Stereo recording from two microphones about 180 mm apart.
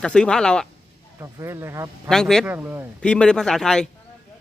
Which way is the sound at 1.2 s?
15° right (ahead or behind).